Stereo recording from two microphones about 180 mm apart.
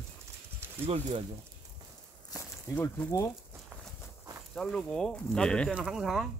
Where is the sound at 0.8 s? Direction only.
35° right (ahead or behind).